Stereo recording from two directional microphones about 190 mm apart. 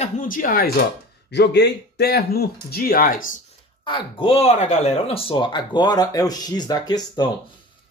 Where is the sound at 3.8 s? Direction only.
25° left (ahead or behind).